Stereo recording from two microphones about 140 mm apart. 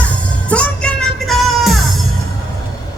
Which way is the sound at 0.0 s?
10° left (ahead or behind).